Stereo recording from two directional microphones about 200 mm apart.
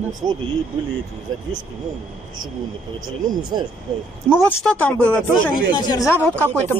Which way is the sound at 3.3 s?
20° right (ahead or behind).